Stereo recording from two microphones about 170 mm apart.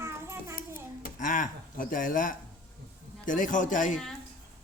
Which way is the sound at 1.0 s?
50° left (ahead or behind).